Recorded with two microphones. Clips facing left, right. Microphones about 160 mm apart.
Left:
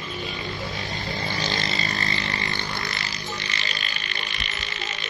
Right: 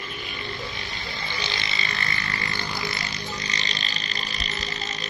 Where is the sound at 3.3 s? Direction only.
35° right (ahead or behind).